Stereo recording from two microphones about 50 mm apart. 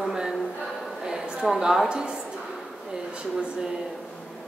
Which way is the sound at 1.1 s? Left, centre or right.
Centre.